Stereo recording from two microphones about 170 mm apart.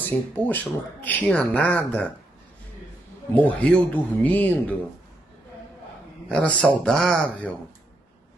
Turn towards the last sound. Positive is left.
turn(degrees=5)  # may be behind; listen again after turning